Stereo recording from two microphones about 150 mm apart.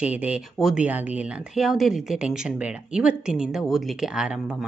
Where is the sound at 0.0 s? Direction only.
10° right (ahead or behind).